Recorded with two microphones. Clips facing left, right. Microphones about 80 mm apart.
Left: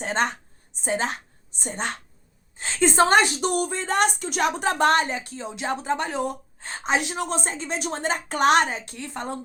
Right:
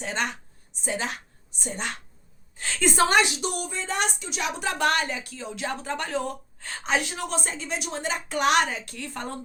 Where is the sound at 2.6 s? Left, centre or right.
Left.